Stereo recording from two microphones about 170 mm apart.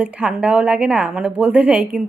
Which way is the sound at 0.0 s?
5° right (ahead or behind).